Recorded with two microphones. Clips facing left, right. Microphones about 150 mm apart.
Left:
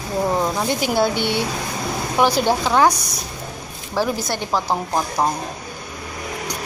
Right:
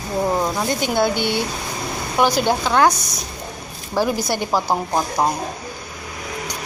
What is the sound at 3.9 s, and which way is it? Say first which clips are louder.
Speech: right 2 dB; centre (ahead or behind).